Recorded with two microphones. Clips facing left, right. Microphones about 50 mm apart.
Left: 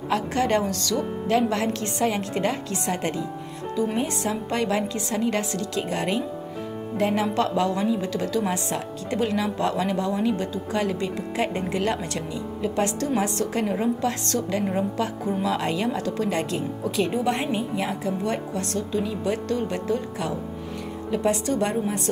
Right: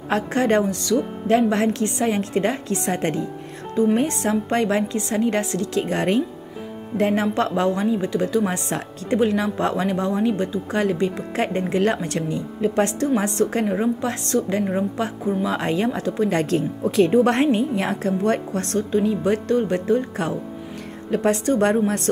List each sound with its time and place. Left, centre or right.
0.1 s a woman's voice: right
16.3 s speech: right
21.8 s speech: right